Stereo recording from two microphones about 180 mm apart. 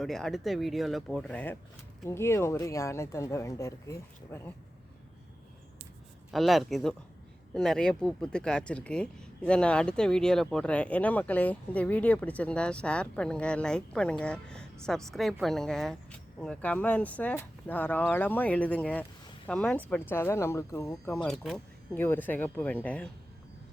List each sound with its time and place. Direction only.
0.0 s speech: centre (ahead or behind)
6.3 s speech: centre (ahead or behind); by 21.1 s 15° left (ahead or behind)
21.1 s speech: 5° left (ahead or behind)